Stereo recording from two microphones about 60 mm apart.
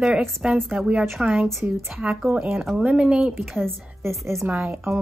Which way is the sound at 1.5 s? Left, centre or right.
Centre.